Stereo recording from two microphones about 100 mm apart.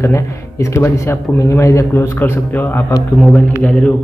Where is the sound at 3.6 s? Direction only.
10° left (ahead or behind).